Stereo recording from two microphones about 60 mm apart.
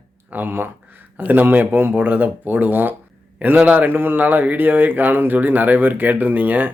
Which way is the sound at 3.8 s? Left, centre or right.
Right.